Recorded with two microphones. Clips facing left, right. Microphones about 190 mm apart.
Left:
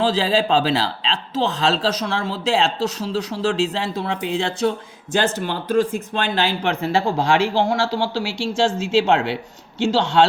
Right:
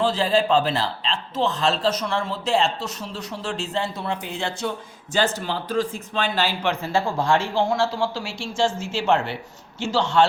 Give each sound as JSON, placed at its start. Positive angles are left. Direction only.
{"t": 0.0, "sound": "speech", "side_deg": 90}
{"t": 5.1, "sound": "a man's voice", "side_deg": 50}